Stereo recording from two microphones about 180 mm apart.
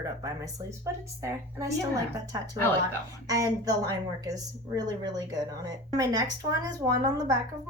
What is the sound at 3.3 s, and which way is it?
A woman's voice, 20° right (ahead or behind).